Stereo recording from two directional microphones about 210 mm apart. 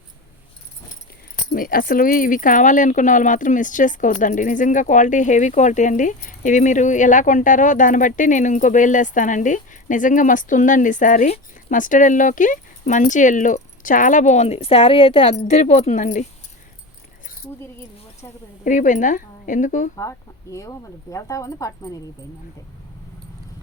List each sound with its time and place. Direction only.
1.5 s speech: 40° left (ahead or behind)
18.6 s speech: 40° left (ahead or behind)
20.0 s speech: 15° left (ahead or behind)